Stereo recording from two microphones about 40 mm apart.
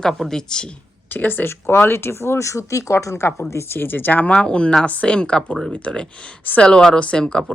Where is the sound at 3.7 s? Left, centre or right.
Left.